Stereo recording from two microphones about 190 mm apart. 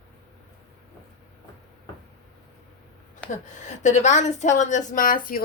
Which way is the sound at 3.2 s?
40° left (ahead or behind).